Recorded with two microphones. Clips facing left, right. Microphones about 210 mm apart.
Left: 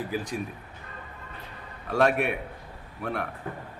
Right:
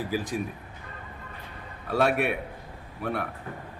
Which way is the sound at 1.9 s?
5° right (ahead or behind).